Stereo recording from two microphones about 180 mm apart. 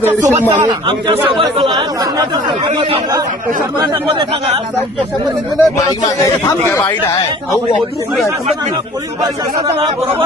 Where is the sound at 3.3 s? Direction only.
50° right (ahead or behind).